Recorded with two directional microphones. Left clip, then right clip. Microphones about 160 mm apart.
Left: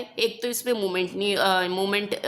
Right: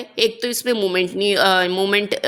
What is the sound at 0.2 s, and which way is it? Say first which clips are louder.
Speech: right 7 dB; 30° right (ahead or behind).